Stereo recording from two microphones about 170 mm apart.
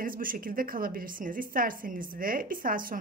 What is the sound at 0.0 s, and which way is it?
Speech, 55° right (ahead or behind).